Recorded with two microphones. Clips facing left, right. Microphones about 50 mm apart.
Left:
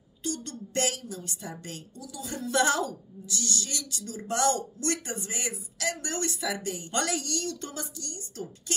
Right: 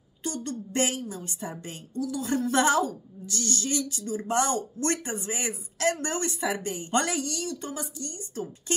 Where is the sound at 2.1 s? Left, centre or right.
Right.